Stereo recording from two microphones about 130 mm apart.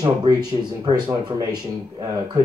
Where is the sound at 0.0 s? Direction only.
30° right (ahead or behind).